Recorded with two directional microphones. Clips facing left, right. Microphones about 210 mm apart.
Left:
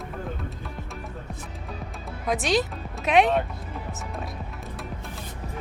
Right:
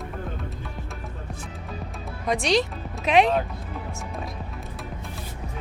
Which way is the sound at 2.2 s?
Centre (ahead or behind).